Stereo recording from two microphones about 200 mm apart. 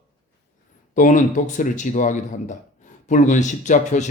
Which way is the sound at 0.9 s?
40° left (ahead or behind).